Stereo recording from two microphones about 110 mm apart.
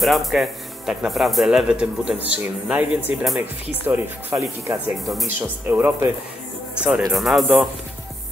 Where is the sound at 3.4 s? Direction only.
20° right (ahead or behind).